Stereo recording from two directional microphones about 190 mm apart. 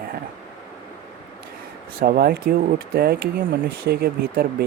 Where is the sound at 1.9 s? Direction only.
55° right (ahead or behind).